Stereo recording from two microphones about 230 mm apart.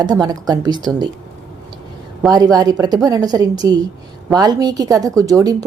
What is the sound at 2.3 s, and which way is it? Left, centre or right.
A woman's voice, centre.